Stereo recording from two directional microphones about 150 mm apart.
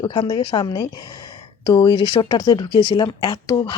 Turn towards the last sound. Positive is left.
turn(degrees=30)  # may be behind; listen again after turning